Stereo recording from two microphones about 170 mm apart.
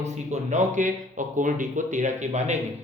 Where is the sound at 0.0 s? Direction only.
45° right (ahead or behind).